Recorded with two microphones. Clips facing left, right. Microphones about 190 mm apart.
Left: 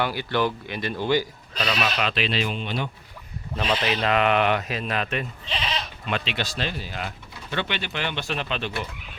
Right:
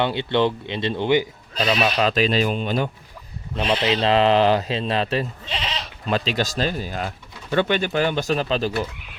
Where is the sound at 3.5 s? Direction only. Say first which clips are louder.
Right 4 dB; 20° right (ahead or behind).